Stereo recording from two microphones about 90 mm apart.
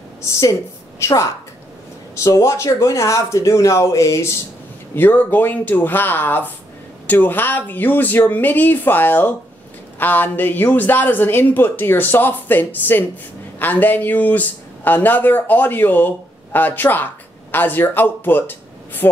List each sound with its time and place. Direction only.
0.2 s a woman's voice: 30° left (ahead or behind)
4.9 s speech: 20° left (ahead or behind)